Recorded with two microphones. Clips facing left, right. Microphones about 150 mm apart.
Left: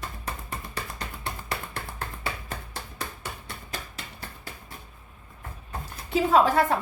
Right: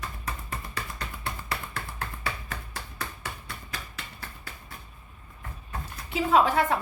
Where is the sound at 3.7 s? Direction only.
25° left (ahead or behind).